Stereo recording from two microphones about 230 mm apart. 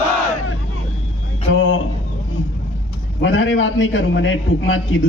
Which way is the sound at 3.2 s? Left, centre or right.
Left.